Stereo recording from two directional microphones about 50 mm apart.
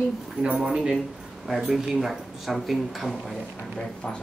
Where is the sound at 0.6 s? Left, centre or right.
Centre.